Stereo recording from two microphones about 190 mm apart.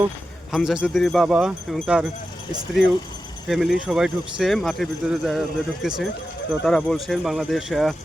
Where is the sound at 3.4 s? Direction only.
Centre (ahead or behind).